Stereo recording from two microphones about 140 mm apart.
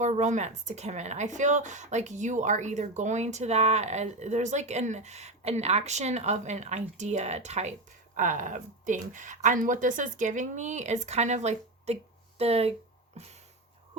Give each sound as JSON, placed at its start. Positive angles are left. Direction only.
{"t": 0.0, "sound": "speech", "side_deg": -60}